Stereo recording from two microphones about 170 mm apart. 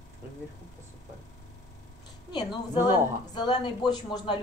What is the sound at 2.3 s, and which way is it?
Speech, 25° left (ahead or behind).